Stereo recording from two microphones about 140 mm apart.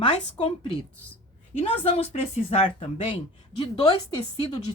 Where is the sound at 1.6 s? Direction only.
45° left (ahead or behind).